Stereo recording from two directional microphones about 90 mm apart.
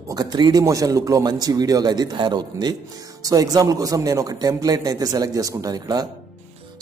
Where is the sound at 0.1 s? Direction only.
45° right (ahead or behind).